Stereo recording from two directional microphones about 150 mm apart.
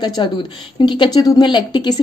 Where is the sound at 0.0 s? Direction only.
30° left (ahead or behind).